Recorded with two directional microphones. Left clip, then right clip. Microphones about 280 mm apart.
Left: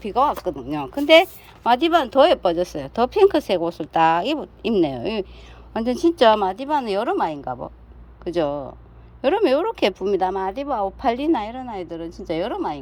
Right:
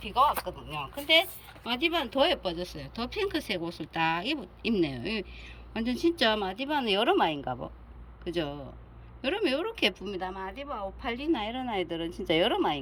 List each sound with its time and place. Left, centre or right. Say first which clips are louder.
0.0 s speech: left 5 dB; left
0.4 s speech: left 11 dB; left
1.0 s a woman's voice: left 11 dB; centre
8.2 s a woman's voice: left 11 dB; centre